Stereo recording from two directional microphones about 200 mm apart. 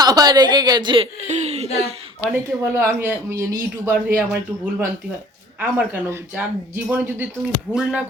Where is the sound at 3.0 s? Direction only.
15° right (ahead or behind).